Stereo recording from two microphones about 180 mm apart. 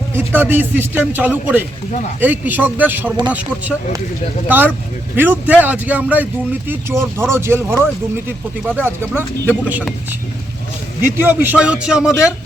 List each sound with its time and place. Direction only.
0.1 s speech: 15° right (ahead or behind)
11.0 s a man's voice: 10° right (ahead or behind)